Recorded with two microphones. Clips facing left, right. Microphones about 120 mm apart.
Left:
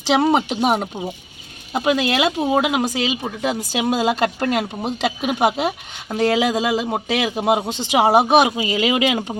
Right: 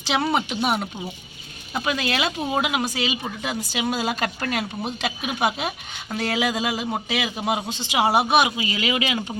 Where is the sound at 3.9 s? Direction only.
20° left (ahead or behind); by 7.9 s 55° left (ahead or behind).